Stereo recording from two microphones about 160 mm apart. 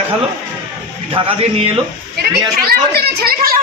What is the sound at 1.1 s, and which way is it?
Speech, 35° right (ahead or behind).